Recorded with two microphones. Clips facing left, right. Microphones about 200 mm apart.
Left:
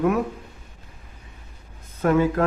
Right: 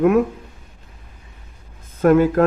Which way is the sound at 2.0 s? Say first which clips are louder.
Right 6 dB; 50° right (ahead or behind).